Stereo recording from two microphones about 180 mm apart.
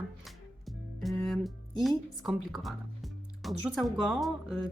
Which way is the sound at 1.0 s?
Centre (ahead or behind).